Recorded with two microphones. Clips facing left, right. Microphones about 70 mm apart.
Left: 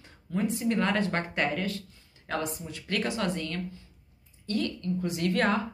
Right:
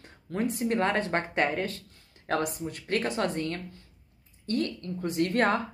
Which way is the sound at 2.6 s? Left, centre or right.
Right.